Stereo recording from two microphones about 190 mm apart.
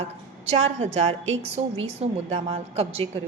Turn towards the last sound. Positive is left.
turn(degrees=-30)  # may be behind; listen again after turning